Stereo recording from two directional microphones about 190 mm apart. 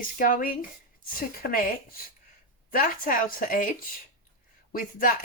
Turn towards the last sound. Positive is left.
turn(degrees=45)  # may be behind; listen again after turning